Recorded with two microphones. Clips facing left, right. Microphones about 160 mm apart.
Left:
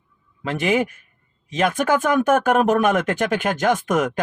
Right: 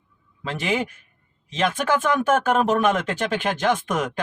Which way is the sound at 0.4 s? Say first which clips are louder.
Left 5 dB; 55° left (ahead or behind).